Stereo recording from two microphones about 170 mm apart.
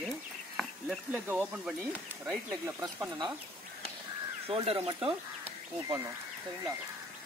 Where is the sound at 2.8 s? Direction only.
25° right (ahead or behind).